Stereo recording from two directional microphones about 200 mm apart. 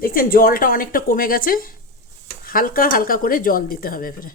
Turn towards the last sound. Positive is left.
turn(degrees=45)  # may be behind; listen again after turning